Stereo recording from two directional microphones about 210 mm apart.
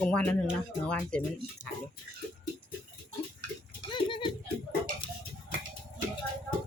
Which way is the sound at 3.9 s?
25° left (ahead or behind).